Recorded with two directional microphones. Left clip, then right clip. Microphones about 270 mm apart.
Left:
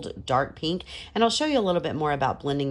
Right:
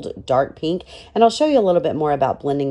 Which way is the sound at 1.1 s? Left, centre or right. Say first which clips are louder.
Right 8 dB; left.